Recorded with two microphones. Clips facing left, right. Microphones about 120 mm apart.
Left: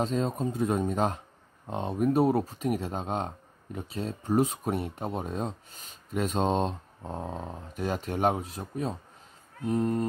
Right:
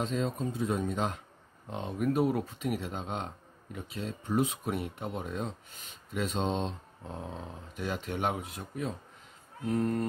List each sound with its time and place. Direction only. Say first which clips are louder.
0.0 s speech: left 3 dB; 40° left (ahead or behind)
9.7 s speech: left 2 dB; 20° left (ahead or behind)